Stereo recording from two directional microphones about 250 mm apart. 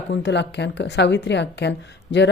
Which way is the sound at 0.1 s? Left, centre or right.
Left.